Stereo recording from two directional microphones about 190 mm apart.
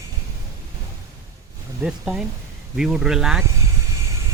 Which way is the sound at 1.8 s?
5° right (ahead or behind).